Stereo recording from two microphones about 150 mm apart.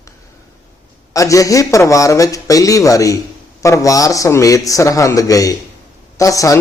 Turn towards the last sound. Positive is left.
turn(degrees=20)  # may be behind; listen again after turning